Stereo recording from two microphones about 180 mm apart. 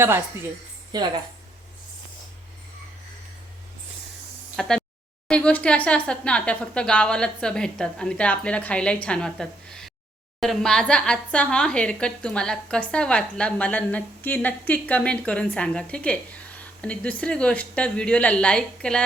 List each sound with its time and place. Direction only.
0.9 s a woman's voice: 25° right (ahead or behind)
4.6 s a woman's voice: 5° left (ahead or behind)